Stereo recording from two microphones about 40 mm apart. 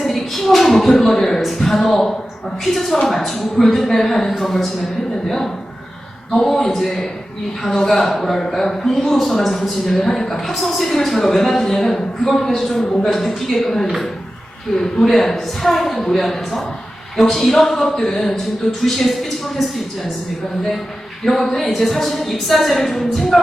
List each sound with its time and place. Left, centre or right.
0.0 s a sound: centre
1.4 s a man's voice: centre
3.1 s a man's voice: centre
6.3 s a man's voice: centre
21.2 s a woman's voice: centre